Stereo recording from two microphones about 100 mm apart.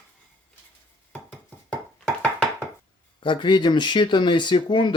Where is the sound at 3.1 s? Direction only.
55° left (ahead or behind).